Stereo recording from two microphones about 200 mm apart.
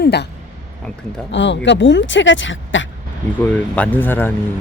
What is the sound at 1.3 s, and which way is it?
Speech, 65° left (ahead or behind).